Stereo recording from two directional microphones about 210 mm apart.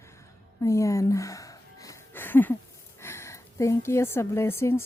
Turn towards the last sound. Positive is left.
turn(degrees=10)  # may be behind; listen again after turning